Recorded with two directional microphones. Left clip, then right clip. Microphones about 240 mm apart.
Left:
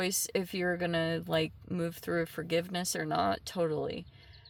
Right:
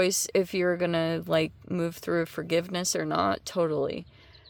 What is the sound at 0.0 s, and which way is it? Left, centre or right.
Speech, right.